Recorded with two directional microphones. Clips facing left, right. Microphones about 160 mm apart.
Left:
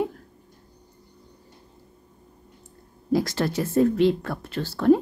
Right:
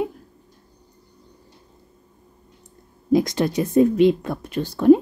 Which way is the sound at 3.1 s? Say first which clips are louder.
Right 4 dB; 20° right (ahead or behind).